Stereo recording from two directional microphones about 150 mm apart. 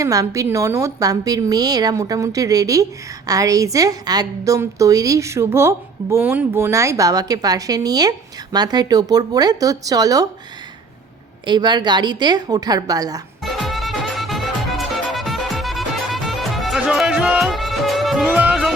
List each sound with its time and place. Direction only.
0.0 s a woman's voice: 20° right (ahead or behind)
11.4 s a woman's voice: 30° right (ahead or behind)
13.4 s music: centre (ahead or behind)